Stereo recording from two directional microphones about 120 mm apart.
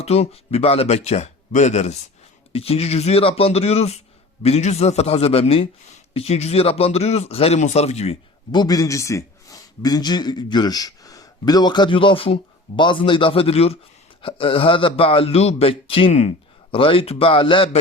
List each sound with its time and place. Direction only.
0.0 s a man's voice: 60° left (ahead or behind)
2.5 s a man's voice: 55° left (ahead or behind)
8.5 s a man's voice: 30° left (ahead or behind)